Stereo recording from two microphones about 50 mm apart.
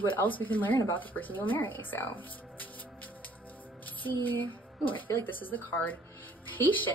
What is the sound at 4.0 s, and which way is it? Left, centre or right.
Speech, left.